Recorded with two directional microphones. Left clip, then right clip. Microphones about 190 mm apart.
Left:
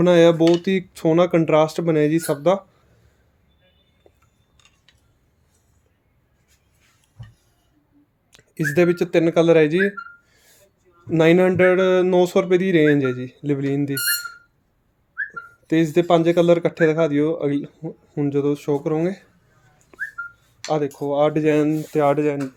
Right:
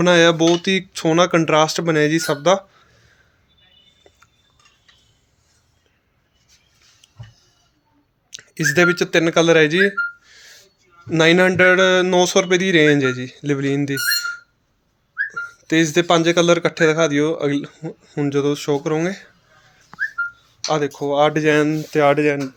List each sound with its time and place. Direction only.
0.0 s speech: 10° left (ahead or behind)
4.1 s cutlery: centre (ahead or behind)
8.3 s speech: 5° left (ahead or behind)
11.1 s speech: 5° left (ahead or behind)
20.7 s speech: centre (ahead or behind)